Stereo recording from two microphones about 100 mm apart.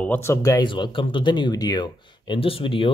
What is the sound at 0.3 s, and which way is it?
Speech, 35° left (ahead or behind).